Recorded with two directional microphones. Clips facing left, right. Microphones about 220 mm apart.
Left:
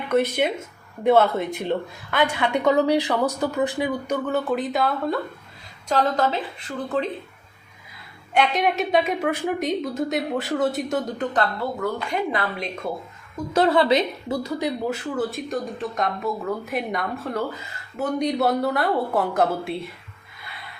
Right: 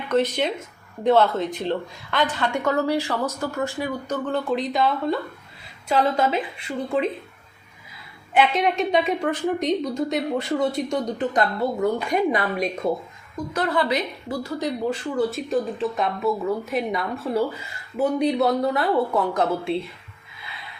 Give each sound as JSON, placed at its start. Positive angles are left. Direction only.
{"t": 0.1, "sound": "a woman's voice", "side_deg": 10}
{"t": 8.3, "sound": "speech", "side_deg": 0}
{"t": 11.3, "sound": "speech", "side_deg": -20}
{"t": 13.5, "sound": "a woman's voice", "side_deg": 25}
{"t": 14.6, "sound": "speech", "side_deg": 5}